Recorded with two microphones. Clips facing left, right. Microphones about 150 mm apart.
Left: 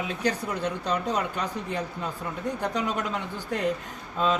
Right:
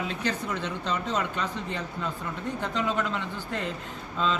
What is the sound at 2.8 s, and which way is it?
Speech, 15° left (ahead or behind).